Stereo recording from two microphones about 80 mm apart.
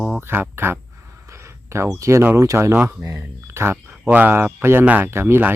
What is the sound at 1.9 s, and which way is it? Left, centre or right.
Speech, right.